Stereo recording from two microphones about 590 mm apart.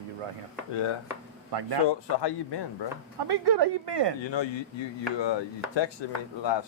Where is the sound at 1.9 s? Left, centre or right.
Left.